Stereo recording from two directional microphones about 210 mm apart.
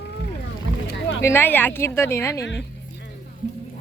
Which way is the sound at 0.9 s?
60° left (ahead or behind).